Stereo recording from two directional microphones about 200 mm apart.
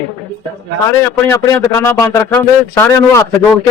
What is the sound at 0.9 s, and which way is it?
A man's voice, 10° left (ahead or behind).